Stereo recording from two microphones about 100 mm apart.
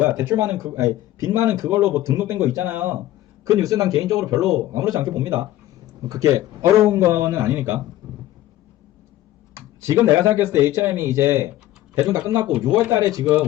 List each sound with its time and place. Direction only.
0.2 s speech: 30° right (ahead or behind)
0.9 s a man's voice: 40° left (ahead or behind)
1.5 s speech: 25° right (ahead or behind)
3.4 s a man's voice: 35° right (ahead or behind)
4.4 s a man's voice: 5° right (ahead or behind)
4.7 s a man's voice: 30° right (ahead or behind)
9.6 s speech: 25° right (ahead or behind)
12.0 s a man's voice: 40° right (ahead or behind)
12.5 s speech: 10° right (ahead or behind)